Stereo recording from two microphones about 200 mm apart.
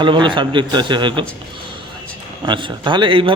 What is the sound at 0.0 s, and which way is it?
A man's voice, 25° right (ahead or behind).